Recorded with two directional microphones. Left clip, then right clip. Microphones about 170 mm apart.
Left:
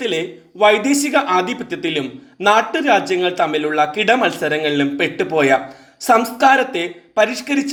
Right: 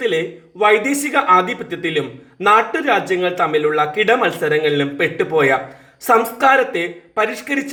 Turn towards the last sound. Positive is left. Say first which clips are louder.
# left 2 dB
turn(degrees=25)  # may be behind; listen again after turning